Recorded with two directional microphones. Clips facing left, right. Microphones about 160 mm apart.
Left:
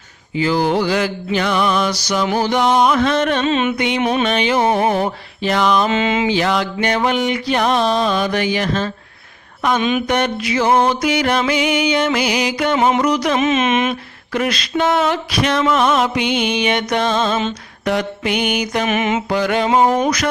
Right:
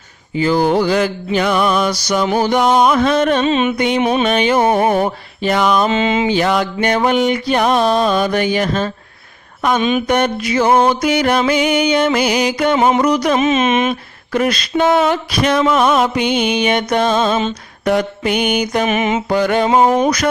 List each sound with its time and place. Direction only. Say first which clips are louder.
0.3 s mantra: right 3 dB; 45° right (ahead or behind)
3.4 s music: right 2 dB; 15° right (ahead or behind)
3.8 s mantra: right 3 dB; 45° right (ahead or behind)
4.0 s mantra: right 1 dB; 20° right (ahead or behind)
4.3 s mantra: right 3 dB; 45° right (ahead or behind)
5.9 s mantra: right 2 dB; 25° right (ahead or behind)
6.2 s mantra: right 2 dB; 50° right (ahead or behind)
9.9 s mantra: right 2 dB; 45° right (ahead or behind)
12.8 s speech: right 1 dB; 40° right (ahead or behind)
15.6 s mantra: right 1 dB; 45° right (ahead or behind)
18.9 s mantra: right 2 dB; 20° right (ahead or behind)
19.3 s mantra: right 3 dB; 45° right (ahead or behind)